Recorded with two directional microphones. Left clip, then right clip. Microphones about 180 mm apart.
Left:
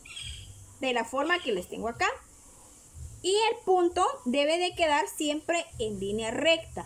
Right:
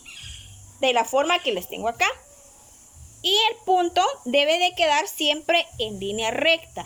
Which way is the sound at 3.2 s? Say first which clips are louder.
Right 5 dB; 30° left (ahead or behind).